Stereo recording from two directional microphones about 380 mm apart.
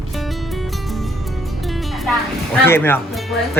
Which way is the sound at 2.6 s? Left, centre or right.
Centre.